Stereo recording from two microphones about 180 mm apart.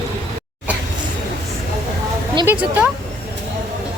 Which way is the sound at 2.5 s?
10° right (ahead or behind).